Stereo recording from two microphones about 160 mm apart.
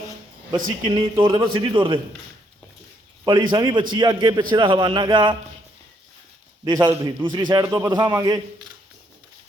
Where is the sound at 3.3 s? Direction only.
30° right (ahead or behind).